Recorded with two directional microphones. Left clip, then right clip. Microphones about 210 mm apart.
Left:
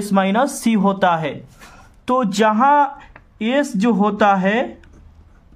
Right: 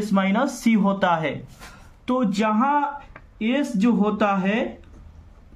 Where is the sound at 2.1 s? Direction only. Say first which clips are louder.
Left 6 dB; 45° left (ahead or behind).